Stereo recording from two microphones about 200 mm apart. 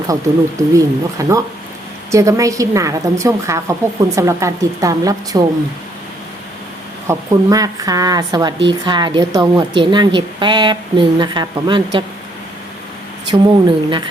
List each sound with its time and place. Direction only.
0.8 s a woman's voice: 15° right (ahead or behind)
7.1 s a woman's voice: 15° right (ahead or behind)
13.3 s a woman's voice: 25° right (ahead or behind)